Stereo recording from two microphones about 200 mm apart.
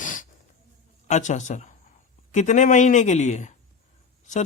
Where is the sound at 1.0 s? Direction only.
35° left (ahead or behind).